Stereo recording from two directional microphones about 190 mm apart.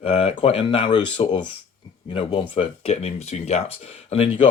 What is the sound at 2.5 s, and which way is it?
Speech, 30° left (ahead or behind).